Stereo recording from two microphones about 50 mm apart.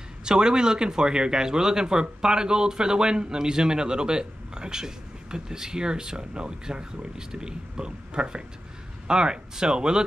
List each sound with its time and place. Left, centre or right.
0.2 s speech: centre